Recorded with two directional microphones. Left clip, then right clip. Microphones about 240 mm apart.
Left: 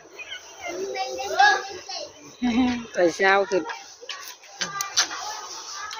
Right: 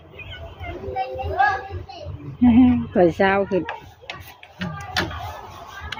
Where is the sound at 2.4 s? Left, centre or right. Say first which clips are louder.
Right 8 dB; centre.